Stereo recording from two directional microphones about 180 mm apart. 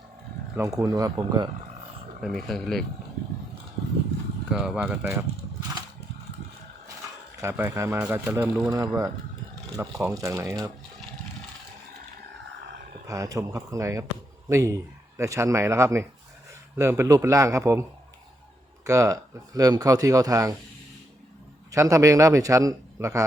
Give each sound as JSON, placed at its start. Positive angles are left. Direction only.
{"t": 0.5, "sound": "speech", "side_deg": -15}
{"t": 2.2, "sound": "speech", "side_deg": 0}
{"t": 4.5, "sound": "speech", "side_deg": -5}
{"t": 7.4, "sound": "speech", "side_deg": -10}
{"t": 10.1, "sound": "speech", "side_deg": -20}
{"t": 13.1, "sound": "speech", "side_deg": -20}
{"t": 18.9, "sound": "speech", "side_deg": -20}
{"t": 21.7, "sound": "speech", "side_deg": -15}